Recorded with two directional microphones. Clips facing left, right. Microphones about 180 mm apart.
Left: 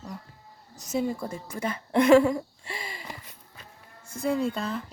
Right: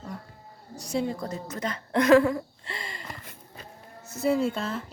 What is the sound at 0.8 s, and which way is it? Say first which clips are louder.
A woman's voice: even; centre (ahead or behind).